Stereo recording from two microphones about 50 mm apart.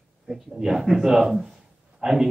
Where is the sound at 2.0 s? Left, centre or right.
Centre.